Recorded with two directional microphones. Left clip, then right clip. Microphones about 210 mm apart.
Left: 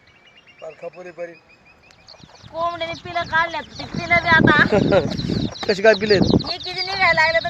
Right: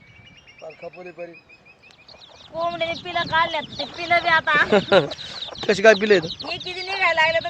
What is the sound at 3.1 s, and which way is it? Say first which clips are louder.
Speech: left 1 dB; 50° right (ahead or behind).